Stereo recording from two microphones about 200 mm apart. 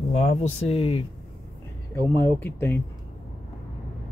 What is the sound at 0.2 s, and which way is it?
Speech, 30° left (ahead or behind).